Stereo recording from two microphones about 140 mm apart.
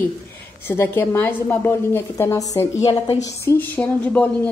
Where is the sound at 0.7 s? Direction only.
15° left (ahead or behind).